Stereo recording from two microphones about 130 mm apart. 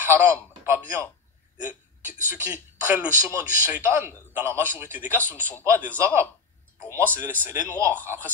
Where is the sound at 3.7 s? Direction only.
15° right (ahead or behind).